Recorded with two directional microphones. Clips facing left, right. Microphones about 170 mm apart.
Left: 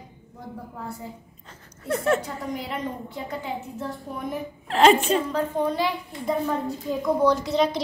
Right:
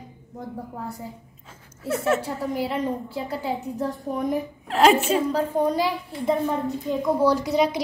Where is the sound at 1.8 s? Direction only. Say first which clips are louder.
Even; 5° right (ahead or behind).